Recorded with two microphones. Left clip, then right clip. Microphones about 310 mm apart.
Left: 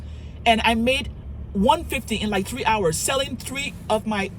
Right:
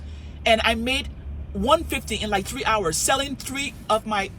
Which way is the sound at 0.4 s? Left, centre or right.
Centre.